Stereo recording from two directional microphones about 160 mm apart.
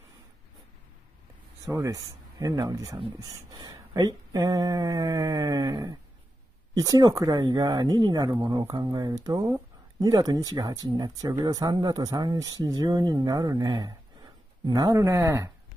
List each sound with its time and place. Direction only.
1.6 s speech: 20° right (ahead or behind)